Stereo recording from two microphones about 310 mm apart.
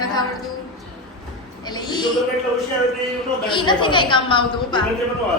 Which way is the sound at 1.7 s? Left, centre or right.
Centre.